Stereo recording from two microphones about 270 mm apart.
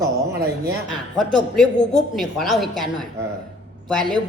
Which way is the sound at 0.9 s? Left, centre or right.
Centre.